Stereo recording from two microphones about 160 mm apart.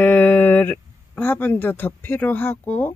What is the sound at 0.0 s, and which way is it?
Speech, 10° left (ahead or behind).